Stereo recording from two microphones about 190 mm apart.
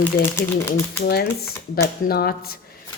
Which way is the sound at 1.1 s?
55° left (ahead or behind).